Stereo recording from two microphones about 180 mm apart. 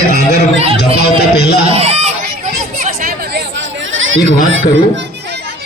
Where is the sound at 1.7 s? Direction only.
35° right (ahead or behind).